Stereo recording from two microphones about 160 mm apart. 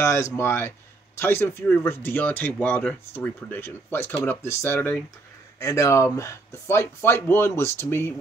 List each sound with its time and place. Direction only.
0.0 s a man's voice: 15° left (ahead or behind)